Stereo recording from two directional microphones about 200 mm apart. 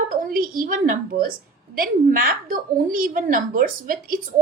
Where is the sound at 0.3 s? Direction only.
45° right (ahead or behind).